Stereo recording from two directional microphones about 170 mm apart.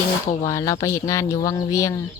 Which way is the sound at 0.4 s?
20° left (ahead or behind).